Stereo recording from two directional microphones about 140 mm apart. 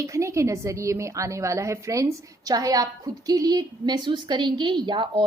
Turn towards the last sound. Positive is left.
turn(degrees=-35)  # may be behind; listen again after turning